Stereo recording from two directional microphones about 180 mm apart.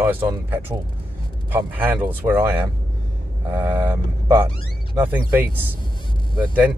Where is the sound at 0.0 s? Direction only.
10° right (ahead or behind).